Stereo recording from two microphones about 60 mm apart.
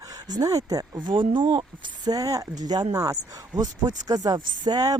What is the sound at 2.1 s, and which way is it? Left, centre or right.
Speech, right.